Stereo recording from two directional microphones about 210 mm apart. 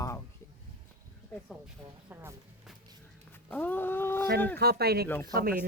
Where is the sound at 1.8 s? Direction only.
10° right (ahead or behind).